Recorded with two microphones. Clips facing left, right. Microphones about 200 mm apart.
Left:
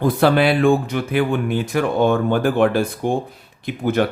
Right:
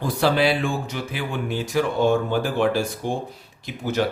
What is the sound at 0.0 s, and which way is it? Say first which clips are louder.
Speech: left 5 dB; 55° left (ahead or behind).